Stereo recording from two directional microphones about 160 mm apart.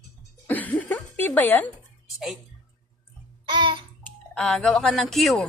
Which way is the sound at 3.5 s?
30° right (ahead or behind).